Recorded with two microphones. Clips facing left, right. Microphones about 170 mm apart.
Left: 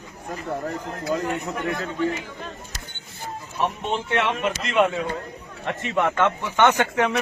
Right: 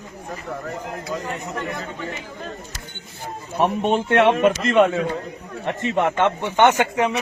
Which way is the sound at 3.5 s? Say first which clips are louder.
Right 6 dB; 55° right (ahead or behind).